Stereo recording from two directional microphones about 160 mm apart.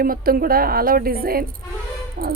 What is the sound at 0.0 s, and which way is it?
A woman's voice, 65° right (ahead or behind).